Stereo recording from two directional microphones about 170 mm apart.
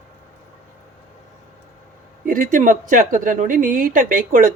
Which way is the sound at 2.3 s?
50° right (ahead or behind).